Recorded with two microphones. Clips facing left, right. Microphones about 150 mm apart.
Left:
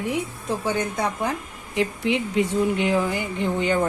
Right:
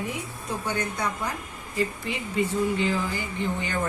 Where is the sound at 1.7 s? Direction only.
70° left (ahead or behind).